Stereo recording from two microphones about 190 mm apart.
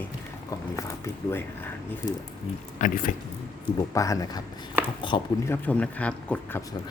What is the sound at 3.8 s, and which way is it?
Speech, 15° left (ahead or behind).